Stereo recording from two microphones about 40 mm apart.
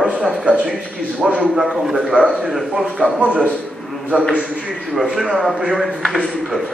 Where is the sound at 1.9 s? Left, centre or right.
Right.